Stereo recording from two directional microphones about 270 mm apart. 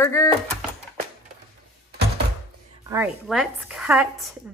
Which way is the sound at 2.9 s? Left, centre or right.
Centre.